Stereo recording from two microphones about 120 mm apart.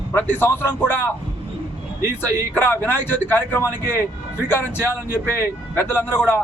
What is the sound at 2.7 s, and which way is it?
A man's voice, 15° left (ahead or behind).